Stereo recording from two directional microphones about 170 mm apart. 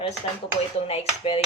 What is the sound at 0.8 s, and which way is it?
Speech, 35° left (ahead or behind).